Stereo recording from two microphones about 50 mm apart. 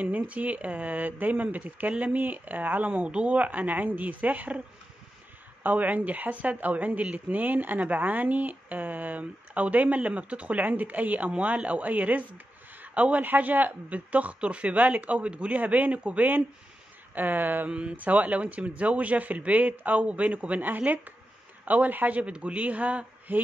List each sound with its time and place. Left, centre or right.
0.0 s speech: right
3.1 s speech: right
5.6 s a woman's voice: right
17.6 s a woman's voice: right
23.3 s speech: right